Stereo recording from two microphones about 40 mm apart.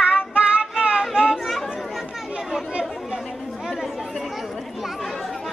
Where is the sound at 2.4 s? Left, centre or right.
Centre.